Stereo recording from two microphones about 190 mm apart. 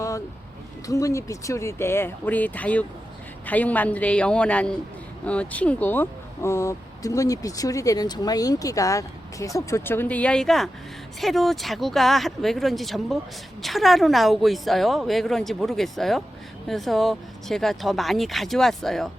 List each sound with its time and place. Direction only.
0.9 s speech: 15° left (ahead or behind); by 19.0 s centre (ahead or behind)